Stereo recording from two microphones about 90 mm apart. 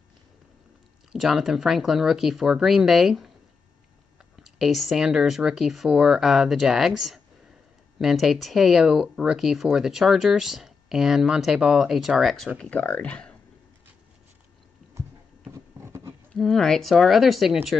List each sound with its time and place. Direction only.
1.1 s speech: centre (ahead or behind)
4.4 s speech: centre (ahead or behind)
12.5 s speech: 15° left (ahead or behind)
15.5 s a sound: 35° right (ahead or behind)
16.3 s speech: 5° left (ahead or behind)